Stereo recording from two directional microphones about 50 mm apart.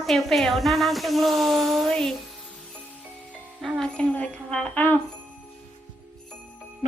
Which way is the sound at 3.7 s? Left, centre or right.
Centre.